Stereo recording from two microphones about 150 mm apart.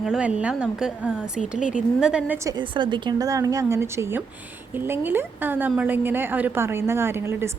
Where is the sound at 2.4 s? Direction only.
30° right (ahead or behind).